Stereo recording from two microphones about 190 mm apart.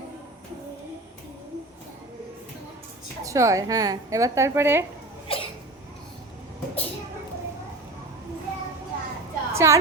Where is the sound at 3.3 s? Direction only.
15° right (ahead or behind).